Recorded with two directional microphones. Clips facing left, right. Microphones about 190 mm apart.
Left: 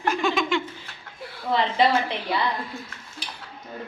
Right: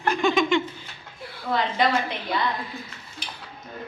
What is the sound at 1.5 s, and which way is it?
Speech, 30° left (ahead or behind).